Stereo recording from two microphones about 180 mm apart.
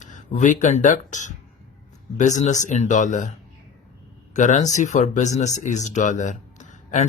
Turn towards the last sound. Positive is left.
turn(degrees=40)  # may be behind; listen again after turning